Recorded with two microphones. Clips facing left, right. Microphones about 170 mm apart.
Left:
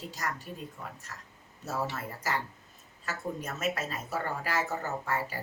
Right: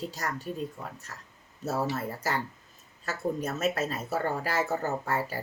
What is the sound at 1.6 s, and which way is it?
A woman's voice, 40° right (ahead or behind).